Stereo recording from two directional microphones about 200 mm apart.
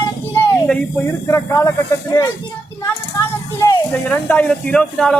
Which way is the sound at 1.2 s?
15° left (ahead or behind).